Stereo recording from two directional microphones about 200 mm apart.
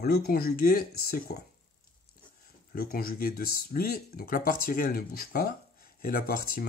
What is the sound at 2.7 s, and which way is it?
Speech, 50° left (ahead or behind).